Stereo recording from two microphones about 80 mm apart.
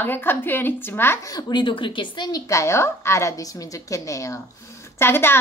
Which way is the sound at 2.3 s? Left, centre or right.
Left.